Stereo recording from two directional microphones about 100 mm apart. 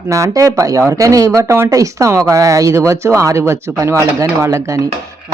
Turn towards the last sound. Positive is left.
turn(degrees=-30)  # may be behind; listen again after turning